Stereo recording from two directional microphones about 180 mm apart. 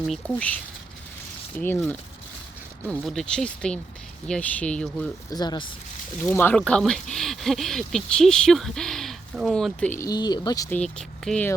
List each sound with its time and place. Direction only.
0.1 s speech: 5° left (ahead or behind)
2.8 s speech: 5° left (ahead or behind)
5.3 s speech: 25° left (ahead or behind)
6.2 s speech: 10° left (ahead or behind)
10.7 s speech: 5° left (ahead or behind)